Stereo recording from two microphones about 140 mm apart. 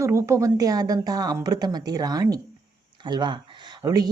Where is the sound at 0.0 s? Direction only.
20° right (ahead or behind).